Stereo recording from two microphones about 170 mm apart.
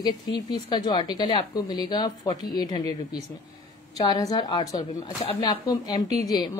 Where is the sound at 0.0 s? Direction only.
25° left (ahead or behind).